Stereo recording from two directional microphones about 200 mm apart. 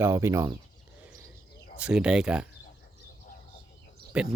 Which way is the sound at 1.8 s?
5° right (ahead or behind).